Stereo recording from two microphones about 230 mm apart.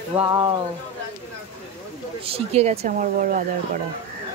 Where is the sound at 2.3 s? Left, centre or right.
Right.